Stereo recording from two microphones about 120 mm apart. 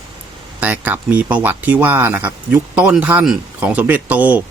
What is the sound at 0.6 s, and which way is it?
A man's voice, 15° right (ahead or behind).